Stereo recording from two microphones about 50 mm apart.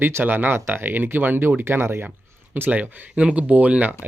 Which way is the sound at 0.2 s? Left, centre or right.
Right.